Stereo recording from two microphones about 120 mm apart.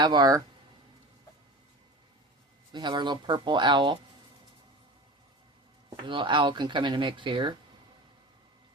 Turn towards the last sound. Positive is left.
turn(degrees=-40)  # may be behind; listen again after turning